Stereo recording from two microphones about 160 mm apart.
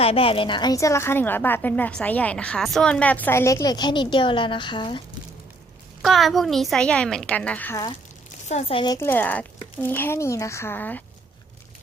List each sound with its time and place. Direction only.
0.0 s a woman's voice: 35° left (ahead or behind)
6.0 s a woman's voice: centre (ahead or behind)
8.4 s speech: 40° left (ahead or behind)
9.0 s a woman's voice: 15° left (ahead or behind)